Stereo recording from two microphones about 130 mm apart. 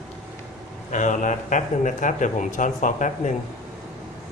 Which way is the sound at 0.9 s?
75° left (ahead or behind).